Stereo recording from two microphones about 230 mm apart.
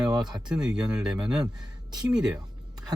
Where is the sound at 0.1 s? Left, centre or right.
Centre.